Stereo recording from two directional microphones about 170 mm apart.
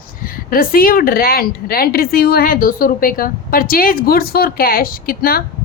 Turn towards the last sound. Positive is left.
turn(degrees=60)  # may be behind; listen again after turning